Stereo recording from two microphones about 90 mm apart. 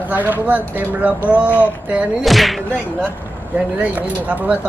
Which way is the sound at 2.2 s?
Centre (ahead or behind).